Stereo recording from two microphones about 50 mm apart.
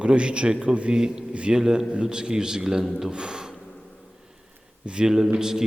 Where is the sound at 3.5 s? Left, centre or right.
Centre.